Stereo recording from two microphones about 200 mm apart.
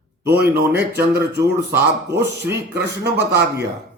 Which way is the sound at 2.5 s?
15° right (ahead or behind).